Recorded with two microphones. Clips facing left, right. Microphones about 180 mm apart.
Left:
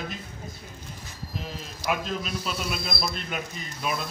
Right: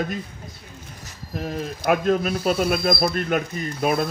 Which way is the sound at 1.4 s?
55° right (ahead or behind).